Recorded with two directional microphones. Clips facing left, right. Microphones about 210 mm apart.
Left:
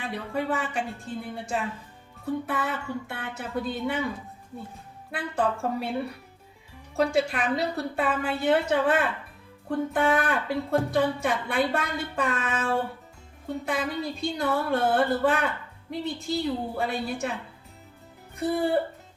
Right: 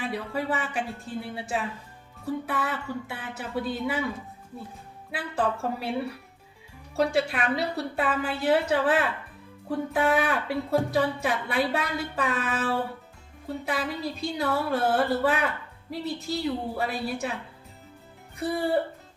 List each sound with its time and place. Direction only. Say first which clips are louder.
0.3 s a woman's voice: left 3 dB; 5° right (ahead or behind)
5.1 s a woman's voice: left 1 dB; 5° right (ahead or behind)
6.9 s a woman's voice: left 1 dB; centre (ahead or behind)
18.3 s a woman's voice: left 1 dB; centre (ahead or behind)